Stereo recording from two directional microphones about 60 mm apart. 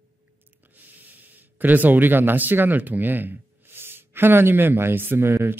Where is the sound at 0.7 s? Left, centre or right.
Right.